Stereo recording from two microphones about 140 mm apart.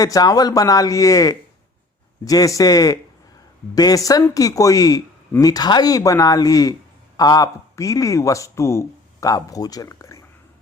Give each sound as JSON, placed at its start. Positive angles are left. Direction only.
{"t": 0.0, "sound": "speech", "side_deg": 25}